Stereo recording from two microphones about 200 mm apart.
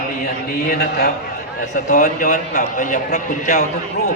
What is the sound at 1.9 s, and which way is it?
A man's voice, 40° left (ahead or behind).